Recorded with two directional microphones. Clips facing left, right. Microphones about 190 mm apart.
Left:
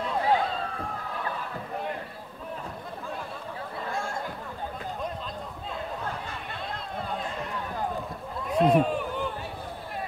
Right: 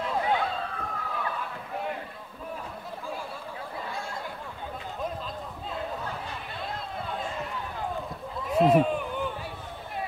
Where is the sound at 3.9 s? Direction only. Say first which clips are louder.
Left 4 dB; 45° left (ahead or behind).